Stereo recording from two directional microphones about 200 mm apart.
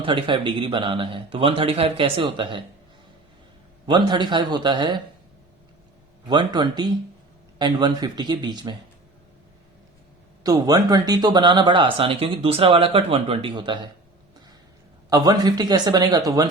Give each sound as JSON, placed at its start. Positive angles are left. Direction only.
{"t": 0.0, "sound": "speech", "side_deg": -25}
{"t": 3.8, "sound": "speech", "side_deg": -20}
{"t": 6.2, "sound": "speech", "side_deg": -20}
{"t": 10.4, "sound": "speech", "side_deg": -20}
{"t": 15.1, "sound": "speech", "side_deg": -20}